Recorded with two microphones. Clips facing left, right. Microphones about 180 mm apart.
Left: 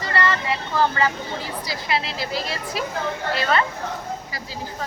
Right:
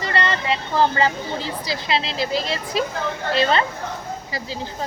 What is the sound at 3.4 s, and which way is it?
Speech, 25° right (ahead or behind).